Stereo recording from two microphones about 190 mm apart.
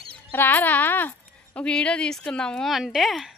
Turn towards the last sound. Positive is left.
turn(degrees=0)  # may be behind; listen again after turning